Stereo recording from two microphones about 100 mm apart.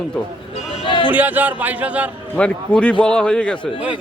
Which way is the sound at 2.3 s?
10° left (ahead or behind).